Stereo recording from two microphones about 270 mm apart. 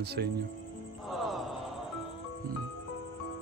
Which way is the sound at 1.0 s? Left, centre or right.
Centre.